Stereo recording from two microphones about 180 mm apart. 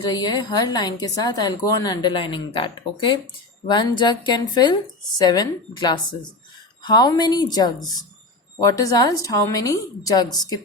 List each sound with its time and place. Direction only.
0.0 s speech: 20° left (ahead or behind)